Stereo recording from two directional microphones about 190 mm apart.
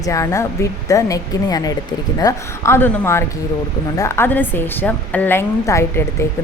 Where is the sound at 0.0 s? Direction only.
15° left (ahead or behind).